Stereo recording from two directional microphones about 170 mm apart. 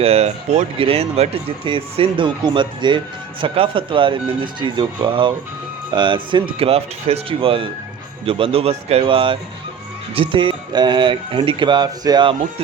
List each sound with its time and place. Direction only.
0.0 s speech: 35° right (ahead or behind)